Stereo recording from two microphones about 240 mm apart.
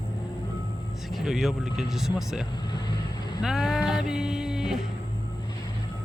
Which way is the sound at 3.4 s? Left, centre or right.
Centre.